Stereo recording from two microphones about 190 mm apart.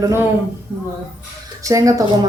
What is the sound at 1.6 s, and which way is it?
Speech, 15° right (ahead or behind).